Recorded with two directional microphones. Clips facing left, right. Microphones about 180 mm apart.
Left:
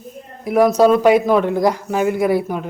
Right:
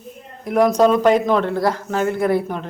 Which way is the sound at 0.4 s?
5° left (ahead or behind).